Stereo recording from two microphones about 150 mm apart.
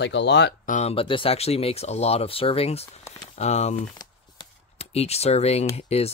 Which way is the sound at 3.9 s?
30° left (ahead or behind).